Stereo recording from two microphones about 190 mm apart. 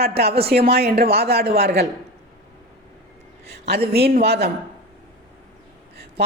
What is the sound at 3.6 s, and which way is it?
Speech, 55° right (ahead or behind).